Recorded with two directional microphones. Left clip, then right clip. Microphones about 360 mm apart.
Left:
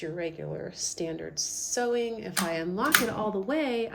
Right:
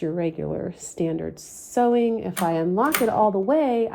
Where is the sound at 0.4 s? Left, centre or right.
Right.